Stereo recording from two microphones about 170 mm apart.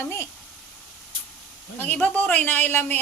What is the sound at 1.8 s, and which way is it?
Speech, 5° left (ahead or behind).